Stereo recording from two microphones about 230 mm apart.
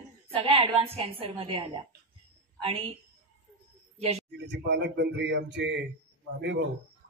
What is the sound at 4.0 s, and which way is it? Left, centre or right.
Speech, right.